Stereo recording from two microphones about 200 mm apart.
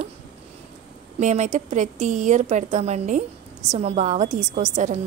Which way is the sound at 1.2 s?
35° right (ahead or behind).